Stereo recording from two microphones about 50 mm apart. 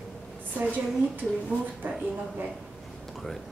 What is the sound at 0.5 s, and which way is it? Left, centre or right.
Speech, right.